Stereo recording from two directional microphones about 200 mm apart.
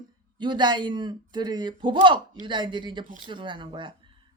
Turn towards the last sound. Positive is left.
turn(degrees=-25)  # may be behind; listen again after turning